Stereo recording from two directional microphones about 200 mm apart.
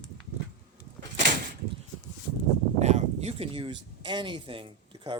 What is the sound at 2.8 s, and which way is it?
Speech, 35° right (ahead or behind).